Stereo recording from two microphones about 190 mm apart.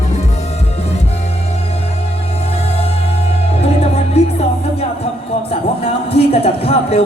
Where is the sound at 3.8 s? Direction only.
35° left (ahead or behind).